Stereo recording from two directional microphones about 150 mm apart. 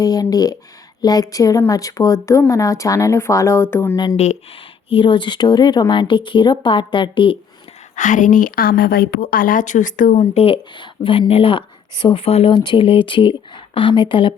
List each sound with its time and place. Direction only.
0.0 s speech: 25° left (ahead or behind)
3.9 s speech: 30° left (ahead or behind)
7.9 s a woman's voice: 55° left (ahead or behind)
10.3 s speech: 35° left (ahead or behind)